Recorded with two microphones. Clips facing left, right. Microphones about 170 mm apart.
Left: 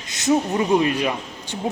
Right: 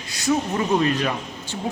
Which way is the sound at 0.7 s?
10° left (ahead or behind).